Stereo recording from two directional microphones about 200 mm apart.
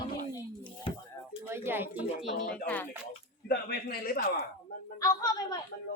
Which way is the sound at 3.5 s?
50° left (ahead or behind).